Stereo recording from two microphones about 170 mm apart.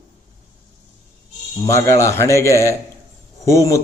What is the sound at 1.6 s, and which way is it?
A man's voice, 15° left (ahead or behind).